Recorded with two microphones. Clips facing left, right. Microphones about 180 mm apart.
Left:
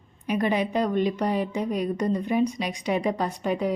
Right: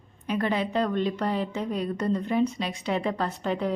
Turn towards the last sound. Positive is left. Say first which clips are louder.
# left 2 dB
turn(degrees=10)  # may be behind; listen again after turning